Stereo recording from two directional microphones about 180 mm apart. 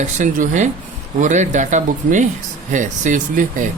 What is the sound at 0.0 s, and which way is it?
Speech, 45° right (ahead or behind).